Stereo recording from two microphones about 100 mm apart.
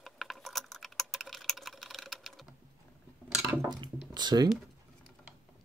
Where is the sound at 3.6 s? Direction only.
45° right (ahead or behind).